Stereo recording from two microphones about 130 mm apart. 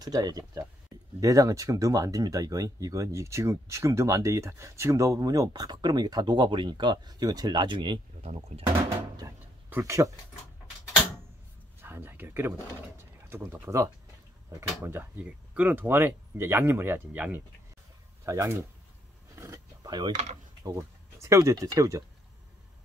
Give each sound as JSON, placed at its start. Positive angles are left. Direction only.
{"t": 0.0, "sound": "speech", "side_deg": -30}
{"t": 9.2, "sound": "speech", "side_deg": -30}
{"t": 9.7, "sound": "speech", "side_deg": -20}
{"t": 11.8, "sound": "speech", "side_deg": -15}
{"t": 18.2, "sound": "speech", "side_deg": -25}
{"t": 19.3, "sound": "a sound", "side_deg": -25}
{"t": 20.6, "sound": "speech", "side_deg": -25}